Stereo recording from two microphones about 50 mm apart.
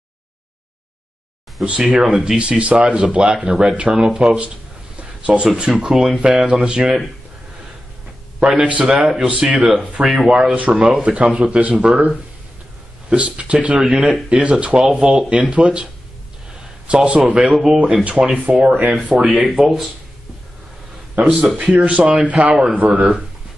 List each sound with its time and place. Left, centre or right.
1.6 s speech: centre
2.4 s speech: right
3.9 s speech: centre
5.0 s a sound: right
5.6 s speech: centre
8.4 s speech: right
10.0 s speech: centre
10.3 s speech: right
13.1 s speech: right
19.0 s speech: right
19.3 s speech: centre
21.1 s speech: right